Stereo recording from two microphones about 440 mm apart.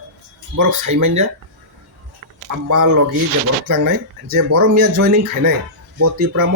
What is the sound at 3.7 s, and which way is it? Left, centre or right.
Speech, right.